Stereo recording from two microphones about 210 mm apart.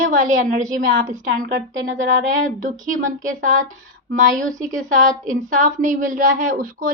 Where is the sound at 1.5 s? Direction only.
60° right (ahead or behind).